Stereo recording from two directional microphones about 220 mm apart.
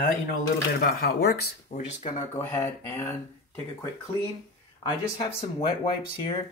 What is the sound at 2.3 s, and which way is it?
Speech, 10° left (ahead or behind).